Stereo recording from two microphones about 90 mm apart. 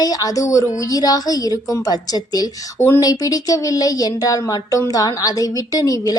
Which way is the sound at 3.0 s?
45° left (ahead or behind).